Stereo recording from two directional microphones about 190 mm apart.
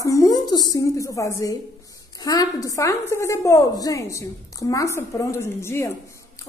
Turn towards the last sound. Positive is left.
turn(degrees=15)  # may be behind; listen again after turning